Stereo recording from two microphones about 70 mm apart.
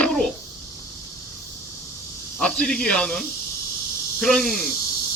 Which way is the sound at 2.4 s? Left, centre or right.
Centre.